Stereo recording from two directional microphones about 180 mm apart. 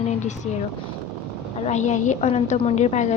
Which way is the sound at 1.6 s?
40° left (ahead or behind).